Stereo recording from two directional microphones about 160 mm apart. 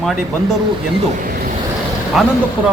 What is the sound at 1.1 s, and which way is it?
Vehicle, 65° right (ahead or behind).